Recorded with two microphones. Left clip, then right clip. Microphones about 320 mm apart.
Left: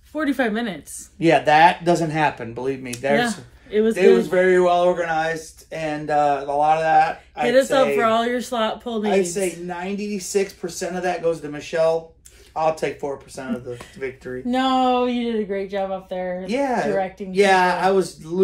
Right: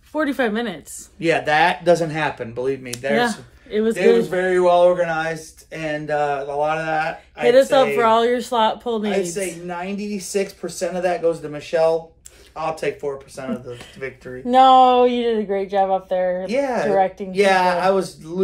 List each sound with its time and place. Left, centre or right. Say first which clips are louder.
0.1 s speech: right 1 dB; centre
1.2 s speech: left 3 dB; centre
3.0 s speech: left 1 dB; centre
3.7 s speech: left 2 dB; centre
4.3 s speech: even; centre
5.8 s speech: left 1 dB; centre
7.4 s speech: right 3 dB; centre
9.1 s speech: left 2 dB; centre
9.7 s speech: even; centre
12.5 s speech: left 2 dB; centre
13.4 s speech: right 1 dB; centre
14.5 s speech: right 8 dB; right
16.4 s speech: right 2 dB; centre